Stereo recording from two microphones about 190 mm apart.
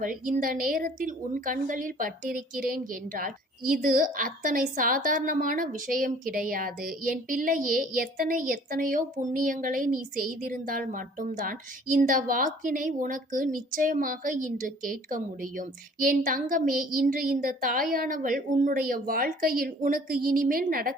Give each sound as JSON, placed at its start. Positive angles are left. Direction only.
{"t": 0.0, "sound": "a woman's voice", "side_deg": -45}